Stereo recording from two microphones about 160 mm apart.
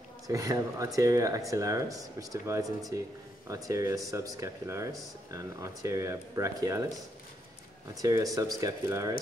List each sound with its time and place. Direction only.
0.3 s speech: 20° right (ahead or behind)
7.9 s speech: 20° right (ahead or behind)